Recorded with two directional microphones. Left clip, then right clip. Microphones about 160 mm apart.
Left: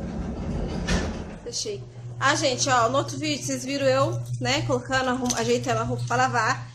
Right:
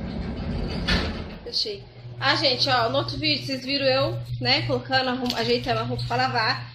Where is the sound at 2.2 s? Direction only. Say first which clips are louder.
Right 1 dB; 15° left (ahead or behind).